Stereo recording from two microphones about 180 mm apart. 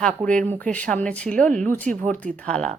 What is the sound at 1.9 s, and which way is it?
Speech, 45° right (ahead or behind).